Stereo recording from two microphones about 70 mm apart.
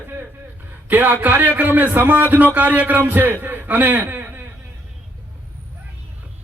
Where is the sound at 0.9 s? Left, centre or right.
Right.